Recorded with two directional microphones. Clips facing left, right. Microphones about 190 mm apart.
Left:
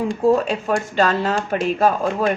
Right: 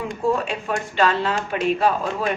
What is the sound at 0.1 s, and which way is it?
A woman's voice, 35° left (ahead or behind).